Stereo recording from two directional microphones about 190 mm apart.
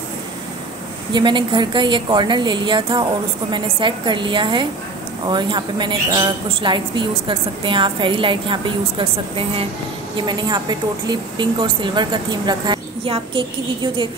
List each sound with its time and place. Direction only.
1.1 s a woman's voice: 25° right (ahead or behind)